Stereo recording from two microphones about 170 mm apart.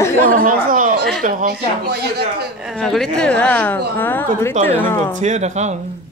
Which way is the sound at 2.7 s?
Centre (ahead or behind).